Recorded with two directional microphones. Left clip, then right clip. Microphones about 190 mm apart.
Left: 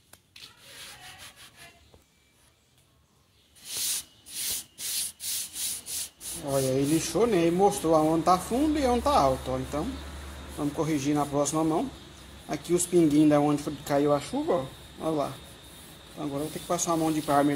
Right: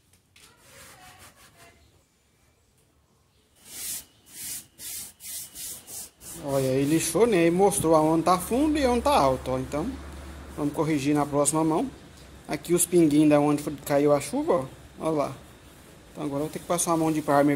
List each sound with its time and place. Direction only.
6.4 s speech: 10° right (ahead or behind)
7.1 s speech: 25° right (ahead or behind)
16.9 s speech: 30° right (ahead or behind)